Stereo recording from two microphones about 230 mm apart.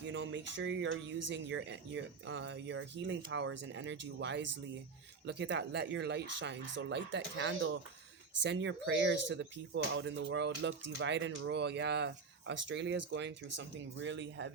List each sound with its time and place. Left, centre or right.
0.1 s speech: right